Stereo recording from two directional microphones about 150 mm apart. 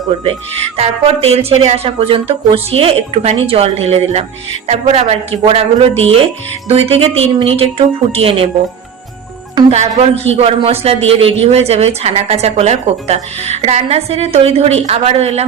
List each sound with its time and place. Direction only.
0.8 s speech: 40° right (ahead or behind)
9.6 s a man's voice: 45° right (ahead or behind)